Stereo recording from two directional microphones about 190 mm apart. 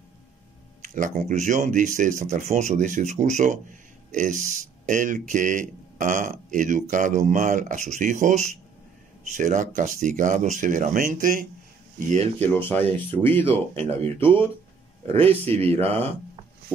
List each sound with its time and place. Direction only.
0.8 s speech: 40° right (ahead or behind)
12.4 s speech: 10° left (ahead or behind)
13.8 s speech: 30° right (ahead or behind)